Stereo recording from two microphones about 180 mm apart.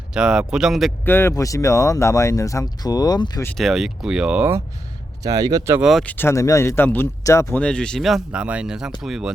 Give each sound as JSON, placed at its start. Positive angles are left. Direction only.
{"t": 0.1, "sound": "speech", "side_deg": -5}
{"t": 1.0, "sound": "speech", "side_deg": 15}
{"t": 3.4, "sound": "speech", "side_deg": 5}
{"t": 5.2, "sound": "speech", "side_deg": -20}
{"t": 5.8, "sound": "speech", "side_deg": 0}